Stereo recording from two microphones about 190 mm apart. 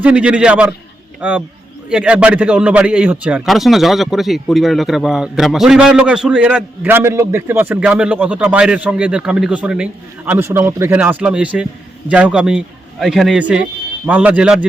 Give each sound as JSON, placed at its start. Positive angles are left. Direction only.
{"t": 0.0, "sound": "a man's voice", "side_deg": -5}